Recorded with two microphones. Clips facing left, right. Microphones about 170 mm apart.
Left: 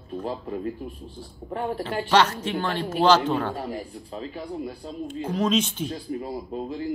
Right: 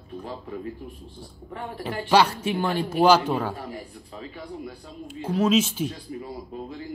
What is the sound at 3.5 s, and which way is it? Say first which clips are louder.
Speech: left 4 dB; 25° left (ahead or behind).